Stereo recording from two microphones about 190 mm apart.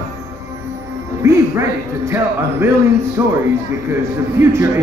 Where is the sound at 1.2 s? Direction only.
15° right (ahead or behind).